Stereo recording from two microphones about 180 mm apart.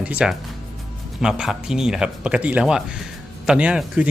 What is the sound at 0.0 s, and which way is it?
Speech, 5° right (ahead or behind).